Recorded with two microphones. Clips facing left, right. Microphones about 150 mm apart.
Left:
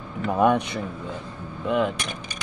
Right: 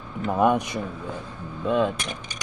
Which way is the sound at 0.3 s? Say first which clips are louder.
Left 1 dB; 5° right (ahead or behind).